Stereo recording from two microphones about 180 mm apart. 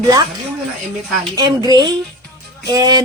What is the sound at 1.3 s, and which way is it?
Speech, 20° right (ahead or behind).